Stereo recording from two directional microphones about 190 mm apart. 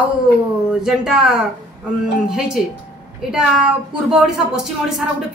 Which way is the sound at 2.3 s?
5° right (ahead or behind).